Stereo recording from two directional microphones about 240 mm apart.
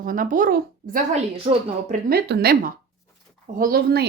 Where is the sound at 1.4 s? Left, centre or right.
Right.